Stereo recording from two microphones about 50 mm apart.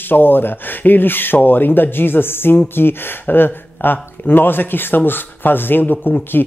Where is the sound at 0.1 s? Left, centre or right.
Left.